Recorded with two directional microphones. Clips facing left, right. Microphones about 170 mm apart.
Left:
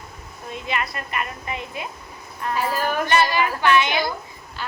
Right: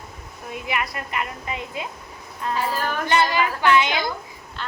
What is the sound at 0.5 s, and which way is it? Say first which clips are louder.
A woman's voice: even; 15° right (ahead or behind).